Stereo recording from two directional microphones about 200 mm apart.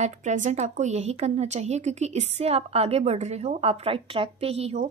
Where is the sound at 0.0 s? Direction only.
35° right (ahead or behind).